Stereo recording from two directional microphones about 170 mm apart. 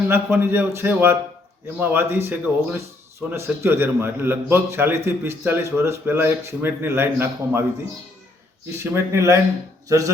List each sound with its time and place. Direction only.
0.1 s speech: 15° right (ahead or behind)
8.8 s speech: 15° right (ahead or behind)